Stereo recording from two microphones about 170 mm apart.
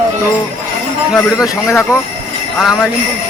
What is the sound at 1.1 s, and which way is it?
Speech, 5° right (ahead or behind).